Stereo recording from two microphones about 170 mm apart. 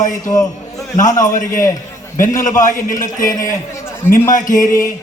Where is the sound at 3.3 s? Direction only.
20° left (ahead or behind).